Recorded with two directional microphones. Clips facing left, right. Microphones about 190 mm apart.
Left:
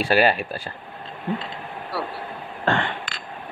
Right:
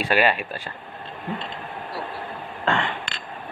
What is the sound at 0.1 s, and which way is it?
Speech, 35° left (ahead or behind).